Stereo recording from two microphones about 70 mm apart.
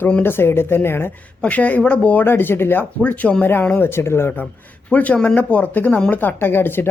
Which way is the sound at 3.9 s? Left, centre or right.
Left.